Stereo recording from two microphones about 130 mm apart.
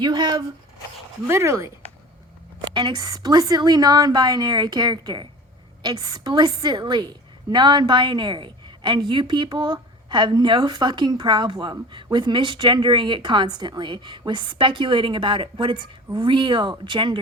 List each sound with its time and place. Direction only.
0.0 s a woman's voice: 35° right (ahead or behind)
1.3 s speech: 20° right (ahead or behind)
2.6 s a woman's voice: 35° right (ahead or behind)